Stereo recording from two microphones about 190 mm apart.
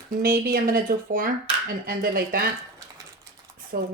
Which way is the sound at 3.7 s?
50° right (ahead or behind).